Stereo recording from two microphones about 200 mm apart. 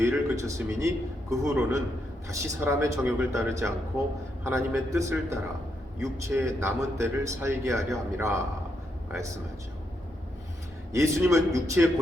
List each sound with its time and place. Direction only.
0.0 s speech: 15° right (ahead or behind)
10.9 s speech: 15° right (ahead or behind)